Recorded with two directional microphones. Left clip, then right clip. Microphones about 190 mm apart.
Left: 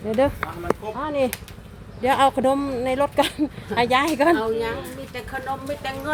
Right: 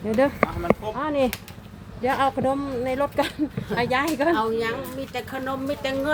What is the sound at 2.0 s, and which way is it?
Speech, 25° left (ahead or behind).